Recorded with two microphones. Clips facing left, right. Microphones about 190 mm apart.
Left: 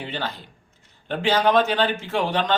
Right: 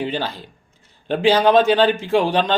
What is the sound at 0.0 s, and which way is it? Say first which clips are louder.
Speech: right 6 dB; 15° right (ahead or behind).